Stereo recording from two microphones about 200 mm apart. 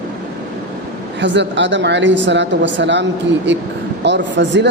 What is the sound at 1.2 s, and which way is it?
Speech, 65° right (ahead or behind).